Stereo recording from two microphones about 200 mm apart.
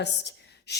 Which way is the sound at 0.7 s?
55° left (ahead or behind).